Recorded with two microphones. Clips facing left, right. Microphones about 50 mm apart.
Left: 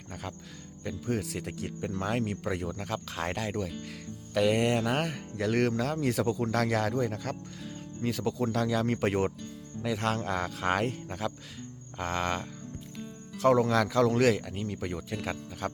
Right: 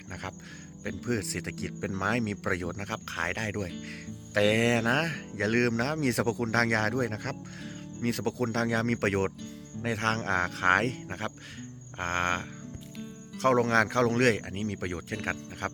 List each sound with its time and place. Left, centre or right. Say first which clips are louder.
0.1 s speech: right 1 dB; right
1.0 s speech: right 1 dB; right
4.4 s speech: right 1 dB; right
11.2 s speech: left 2 dB; right